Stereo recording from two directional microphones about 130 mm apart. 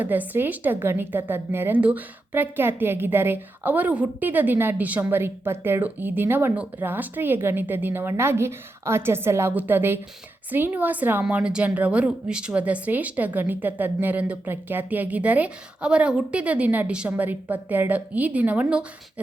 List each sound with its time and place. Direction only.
0.0 s speech: 15° right (ahead or behind)